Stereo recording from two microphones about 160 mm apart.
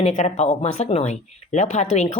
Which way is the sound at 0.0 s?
45° left (ahead or behind).